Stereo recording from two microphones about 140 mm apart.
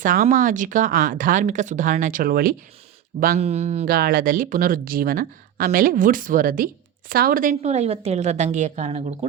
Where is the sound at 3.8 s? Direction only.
90° right.